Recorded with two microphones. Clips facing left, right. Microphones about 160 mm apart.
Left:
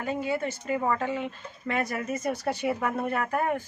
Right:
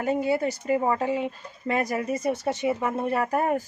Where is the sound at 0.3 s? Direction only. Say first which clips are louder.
Right 5 dB; 35° right (ahead or behind).